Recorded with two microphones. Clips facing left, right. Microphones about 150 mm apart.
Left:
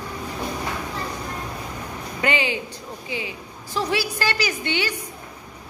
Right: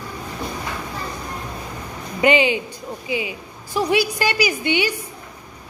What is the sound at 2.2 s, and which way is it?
A woman's voice, 15° right (ahead or behind).